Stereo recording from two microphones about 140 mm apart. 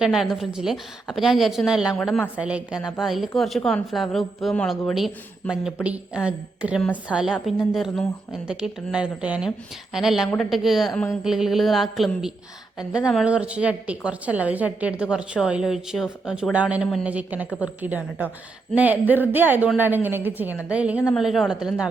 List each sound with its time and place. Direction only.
0.0 s a woman's voice: 5° right (ahead or behind)
2.0 s a woman's voice: 5° left (ahead or behind)
2.3 s a woman's voice: 10° right (ahead or behind)